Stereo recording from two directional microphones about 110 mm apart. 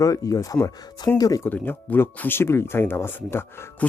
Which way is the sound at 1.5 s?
15° left (ahead or behind).